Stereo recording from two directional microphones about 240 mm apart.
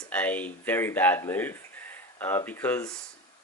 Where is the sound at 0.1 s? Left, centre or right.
Centre.